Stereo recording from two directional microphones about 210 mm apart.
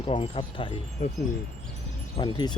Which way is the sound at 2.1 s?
20° left (ahead or behind).